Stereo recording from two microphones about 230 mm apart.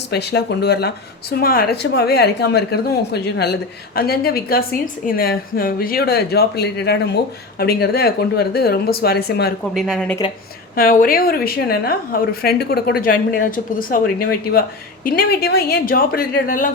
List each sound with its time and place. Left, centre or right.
0.1 s speech: left
9.7 s speech: centre
10.8 s a woman's voice: left
15.0 s a woman's voice: left